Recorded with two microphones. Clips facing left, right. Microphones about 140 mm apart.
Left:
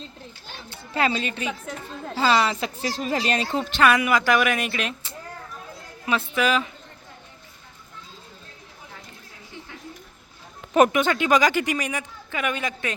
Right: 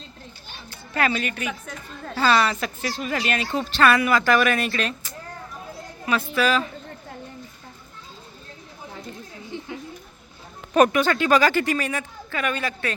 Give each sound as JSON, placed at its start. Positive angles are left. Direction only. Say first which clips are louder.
{"t": 0.7, "sound": "a woman's voice", "louder": "even", "side_deg": 25}
{"t": 2.9, "sound": "speech", "louder": "left 2 dB", "side_deg": 35}
{"t": 3.5, "sound": "speech", "louder": "right 1 dB", "side_deg": 20}
{"t": 10.8, "sound": "speech", "louder": "even", "side_deg": 20}